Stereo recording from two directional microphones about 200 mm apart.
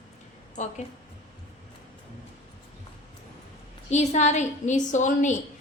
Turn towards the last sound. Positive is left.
turn(degrees=35)  # may be behind; listen again after turning